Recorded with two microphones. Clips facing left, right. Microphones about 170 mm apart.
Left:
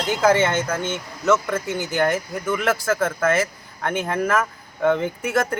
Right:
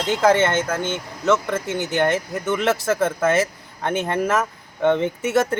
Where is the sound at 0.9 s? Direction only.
20° right (ahead or behind).